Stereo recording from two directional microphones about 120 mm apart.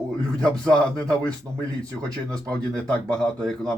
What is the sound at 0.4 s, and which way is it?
Speech, 5° left (ahead or behind).